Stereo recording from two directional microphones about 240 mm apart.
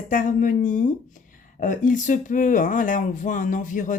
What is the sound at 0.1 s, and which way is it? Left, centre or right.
Speech, left.